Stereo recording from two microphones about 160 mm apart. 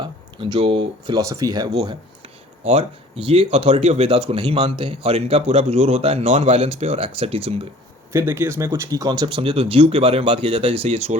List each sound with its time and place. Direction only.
0.0 s speech: 30° right (ahead or behind)
1.2 s speech: 20° right (ahead or behind)
2.2 s speech: 35° right (ahead or behind)
8.1 s speech: 15° right (ahead or behind); by 11.2 s 45° right (ahead or behind)